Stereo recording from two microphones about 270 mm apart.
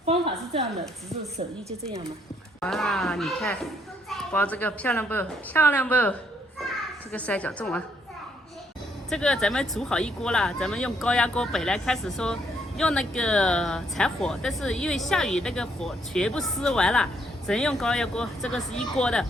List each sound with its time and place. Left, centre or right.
0.0 s a sound: right
2.6 s speech: centre
9.0 s speech: centre